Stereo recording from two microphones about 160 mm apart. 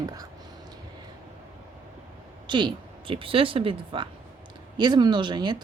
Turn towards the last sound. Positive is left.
turn(degrees=-30)  # may be behind; listen again after turning